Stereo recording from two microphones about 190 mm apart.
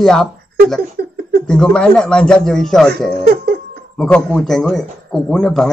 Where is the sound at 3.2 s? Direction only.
55° right (ahead or behind).